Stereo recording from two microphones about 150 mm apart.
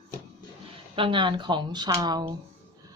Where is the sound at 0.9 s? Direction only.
35° right (ahead or behind).